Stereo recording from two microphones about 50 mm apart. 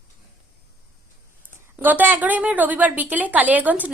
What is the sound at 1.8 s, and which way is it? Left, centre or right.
A woman's voice, right.